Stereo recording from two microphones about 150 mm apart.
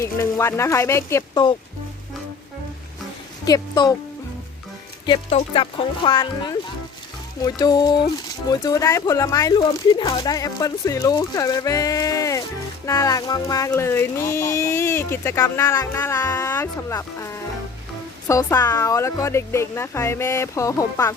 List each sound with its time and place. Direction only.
0.0 s speech: 20° left (ahead or behind)
3.4 s speech: 25° left (ahead or behind)
5.0 s speech: 35° left (ahead or behind)
9.6 s speech: 30° left (ahead or behind)